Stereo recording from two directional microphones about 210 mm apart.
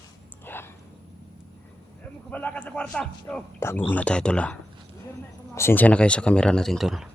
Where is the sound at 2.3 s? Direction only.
5° left (ahead or behind).